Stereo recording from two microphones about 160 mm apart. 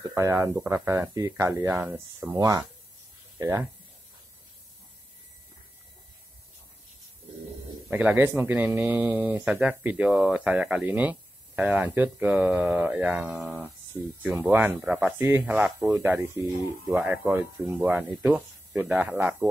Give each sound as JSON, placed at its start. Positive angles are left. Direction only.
{"t": 0.0, "sound": "speech", "side_deg": -20}
{"t": 7.9, "sound": "speech", "side_deg": -10}